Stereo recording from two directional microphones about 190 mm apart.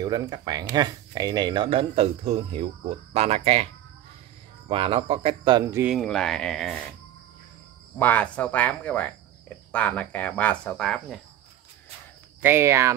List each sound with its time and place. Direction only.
0.0 s speech: 20° right (ahead or behind)
4.6 s speech: 30° right (ahead or behind)
5.7 s speech: 10° right (ahead or behind)
5.9 s speech: centre (ahead or behind)
8.0 s speech: 10° left (ahead or behind)
12.4 s speech: 10° right (ahead or behind)